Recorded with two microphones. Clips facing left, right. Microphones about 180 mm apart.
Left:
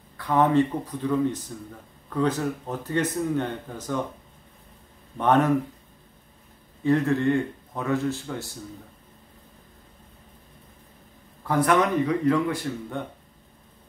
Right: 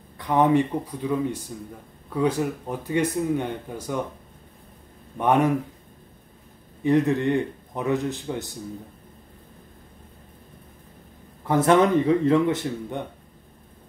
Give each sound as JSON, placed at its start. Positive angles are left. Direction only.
{"t": 0.2, "sound": "speech", "side_deg": -15}
{"t": 5.1, "sound": "speech", "side_deg": -10}
{"t": 6.8, "sound": "speech", "side_deg": -15}
{"t": 11.4, "sound": "speech", "side_deg": -25}